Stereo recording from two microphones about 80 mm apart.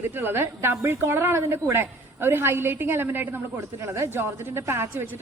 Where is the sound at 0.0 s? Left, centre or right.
Right.